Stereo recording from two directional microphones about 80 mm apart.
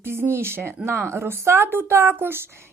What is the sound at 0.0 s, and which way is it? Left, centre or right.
Speech, right.